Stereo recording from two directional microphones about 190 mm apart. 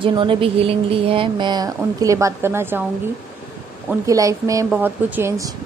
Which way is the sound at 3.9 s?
15° right (ahead or behind).